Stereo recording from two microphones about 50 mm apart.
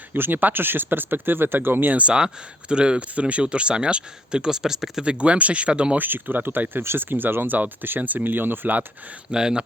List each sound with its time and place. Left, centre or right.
0.1 s speech: right
2.0 s speech: centre
5.0 s speech: right
6.0 s speech: right
9.3 s speech: centre